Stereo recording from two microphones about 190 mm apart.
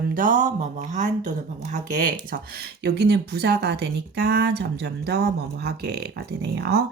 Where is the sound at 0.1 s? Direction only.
45° right (ahead or behind).